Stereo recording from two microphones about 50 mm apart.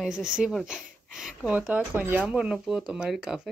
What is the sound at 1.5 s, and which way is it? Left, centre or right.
Speech, right.